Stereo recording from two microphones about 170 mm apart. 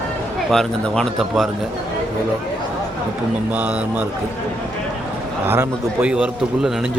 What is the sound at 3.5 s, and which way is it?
Speech, 10° right (ahead or behind).